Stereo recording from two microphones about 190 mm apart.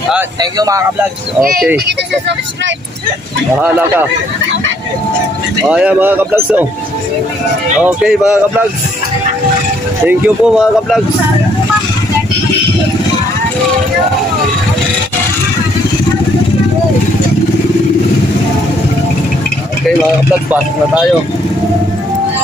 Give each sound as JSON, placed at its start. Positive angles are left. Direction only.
{"t": 0.4, "sound": "speech", "side_deg": -20}
{"t": 1.9, "sound": "speech", "side_deg": -65}
{"t": 3.5, "sound": "speech", "side_deg": -5}
{"t": 5.7, "sound": "speech", "side_deg": -5}
{"t": 7.8, "sound": "speech", "side_deg": -5}
{"t": 10.0, "sound": "speech", "side_deg": -5}